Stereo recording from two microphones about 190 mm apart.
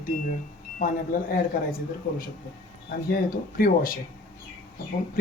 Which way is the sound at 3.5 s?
50° left (ahead or behind).